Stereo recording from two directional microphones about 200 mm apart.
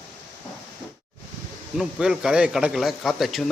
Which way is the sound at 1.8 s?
Centre (ahead or behind).